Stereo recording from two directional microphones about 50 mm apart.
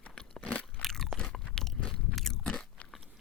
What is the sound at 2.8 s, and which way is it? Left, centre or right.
Crunch, left.